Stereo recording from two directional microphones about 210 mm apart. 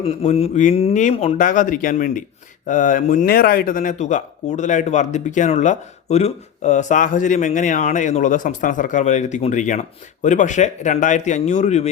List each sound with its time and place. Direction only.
0.0 s speech: 30° left (ahead or behind)